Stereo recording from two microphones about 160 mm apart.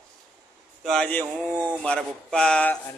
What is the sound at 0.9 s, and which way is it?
A man's voice, 5° left (ahead or behind).